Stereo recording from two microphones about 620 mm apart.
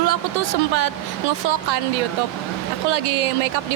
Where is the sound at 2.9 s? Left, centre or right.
Right.